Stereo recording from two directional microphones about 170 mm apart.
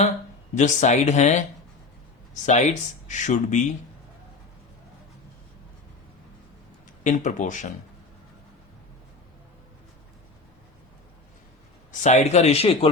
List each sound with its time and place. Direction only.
0.5 s speech: 45° left (ahead or behind)
7.0 s speech: 45° left (ahead or behind)
11.9 s speech: 45° left (ahead or behind)